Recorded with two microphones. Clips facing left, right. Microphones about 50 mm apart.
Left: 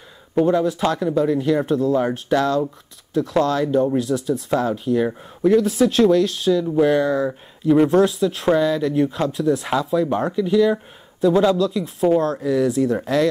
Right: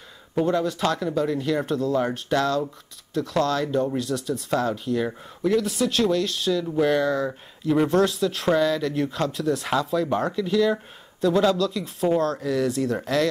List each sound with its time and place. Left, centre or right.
0.3 s speech: centre
12.2 s speech: centre
13.0 s speech: left